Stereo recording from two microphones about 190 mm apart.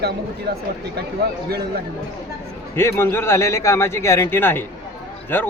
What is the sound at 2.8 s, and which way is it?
A man's voice, 15° left (ahead or behind).